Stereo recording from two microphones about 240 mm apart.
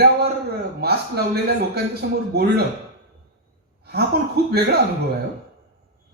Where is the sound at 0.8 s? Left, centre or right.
Right.